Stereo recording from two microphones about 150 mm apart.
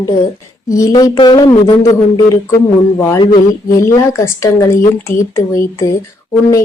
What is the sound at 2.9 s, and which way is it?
A woman's voice, 15° left (ahead or behind).